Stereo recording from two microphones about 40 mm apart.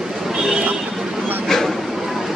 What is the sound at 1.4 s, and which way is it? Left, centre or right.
Bow-wow, centre.